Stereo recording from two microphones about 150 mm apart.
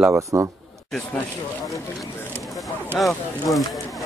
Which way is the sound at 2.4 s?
Centre (ahead or behind).